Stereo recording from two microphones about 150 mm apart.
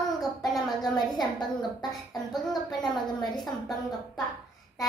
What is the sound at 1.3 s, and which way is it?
Speech, 30° left (ahead or behind).